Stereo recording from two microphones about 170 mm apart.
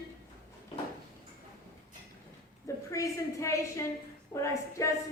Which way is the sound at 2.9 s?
20° left (ahead or behind).